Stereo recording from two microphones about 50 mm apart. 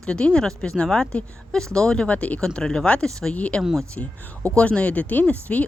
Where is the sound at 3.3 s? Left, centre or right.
Left.